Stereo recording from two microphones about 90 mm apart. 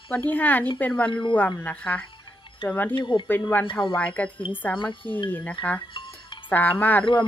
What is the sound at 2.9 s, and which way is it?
Speech, 65° left (ahead or behind).